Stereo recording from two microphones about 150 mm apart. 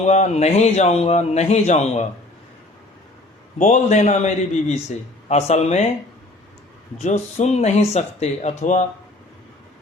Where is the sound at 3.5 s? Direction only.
50° left (ahead or behind).